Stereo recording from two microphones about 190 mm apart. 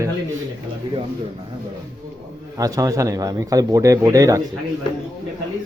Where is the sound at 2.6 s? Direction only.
20° right (ahead or behind).